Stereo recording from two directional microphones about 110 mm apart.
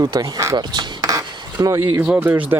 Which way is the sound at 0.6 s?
45° right (ahead or behind).